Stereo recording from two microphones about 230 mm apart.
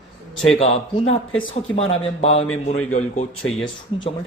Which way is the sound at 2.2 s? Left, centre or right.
Left.